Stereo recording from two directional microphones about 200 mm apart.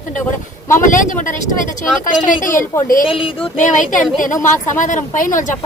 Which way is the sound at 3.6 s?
40° left (ahead or behind).